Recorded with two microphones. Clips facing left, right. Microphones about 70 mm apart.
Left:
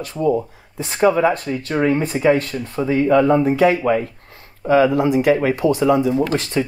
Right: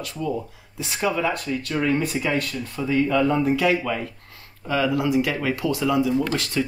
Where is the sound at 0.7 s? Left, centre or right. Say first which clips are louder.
Left 8 dB; left.